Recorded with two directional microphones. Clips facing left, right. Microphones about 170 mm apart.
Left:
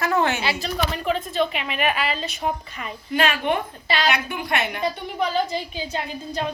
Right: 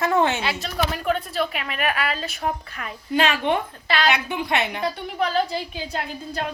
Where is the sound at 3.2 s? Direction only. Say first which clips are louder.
Right 1 dB; 25° right (ahead or behind).